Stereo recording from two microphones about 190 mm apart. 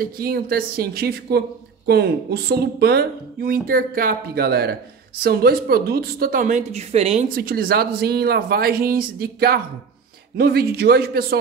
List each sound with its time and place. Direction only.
0.0 s speech: 50° right (ahead or behind); by 7.2 s 35° right (ahead or behind)
7.2 s speech: 50° right (ahead or behind)